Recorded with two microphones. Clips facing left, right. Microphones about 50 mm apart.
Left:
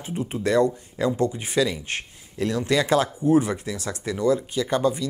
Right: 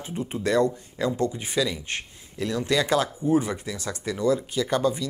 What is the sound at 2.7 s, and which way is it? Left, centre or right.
Speech, left.